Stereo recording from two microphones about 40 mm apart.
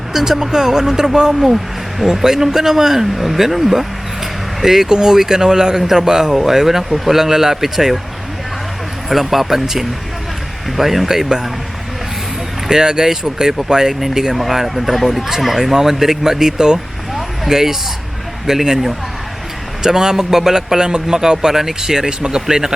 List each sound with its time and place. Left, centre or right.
0.1 s speech: centre
9.0 s speech: centre
12.6 s speech: centre